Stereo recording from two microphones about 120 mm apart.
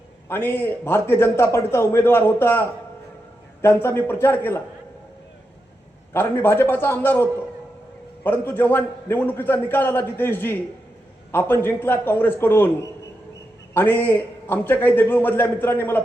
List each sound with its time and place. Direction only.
0.3 s a man's voice: 15° left (ahead or behind)
6.1 s a man's voice: 20° left (ahead or behind)